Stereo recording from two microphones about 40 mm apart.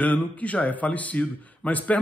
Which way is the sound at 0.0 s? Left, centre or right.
Left.